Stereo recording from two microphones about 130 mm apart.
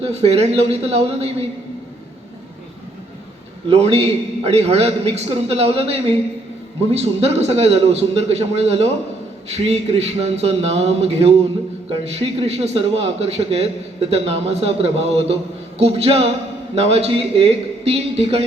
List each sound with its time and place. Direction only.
0.0 s a man's voice: 55° right (ahead or behind)
3.8 s a man's voice: 55° right (ahead or behind)